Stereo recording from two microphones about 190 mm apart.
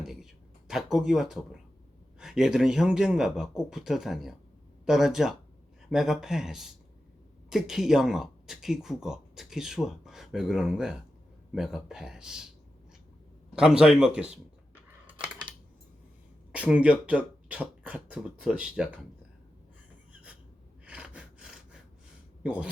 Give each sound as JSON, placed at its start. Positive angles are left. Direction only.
{"t": 0.0, "sound": "a sound", "side_deg": 0}
{"t": 0.7, "sound": "speech", "side_deg": 0}
{"t": 13.6, "sound": "speech", "side_deg": -5}
{"t": 16.5, "sound": "speech", "side_deg": -5}
{"t": 20.8, "sound": "gasp", "side_deg": -5}
{"t": 22.4, "sound": "speech", "side_deg": -5}